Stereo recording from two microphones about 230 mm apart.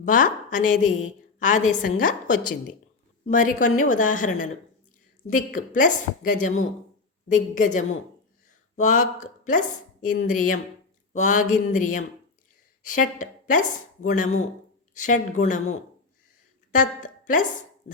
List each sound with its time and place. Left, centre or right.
0.0 s a woman's voice: left